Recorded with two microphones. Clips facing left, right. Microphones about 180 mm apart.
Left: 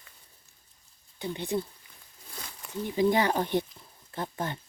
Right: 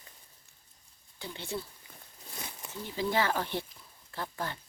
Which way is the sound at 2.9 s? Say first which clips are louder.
Left 5 dB; 20° left (ahead or behind).